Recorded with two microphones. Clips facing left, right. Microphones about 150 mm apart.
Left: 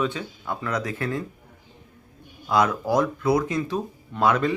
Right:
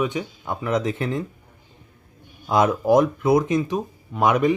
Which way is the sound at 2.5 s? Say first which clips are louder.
Right 4 dB; 20° right (ahead or behind).